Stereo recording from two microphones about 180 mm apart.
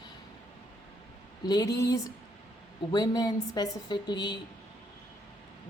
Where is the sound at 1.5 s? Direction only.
20° left (ahead or behind).